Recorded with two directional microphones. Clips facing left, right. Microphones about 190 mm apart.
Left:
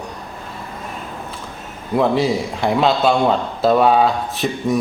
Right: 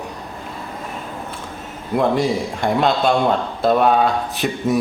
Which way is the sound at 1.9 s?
Centre (ahead or behind).